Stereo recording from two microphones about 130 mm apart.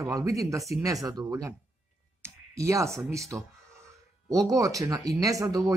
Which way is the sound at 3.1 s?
25° right (ahead or behind).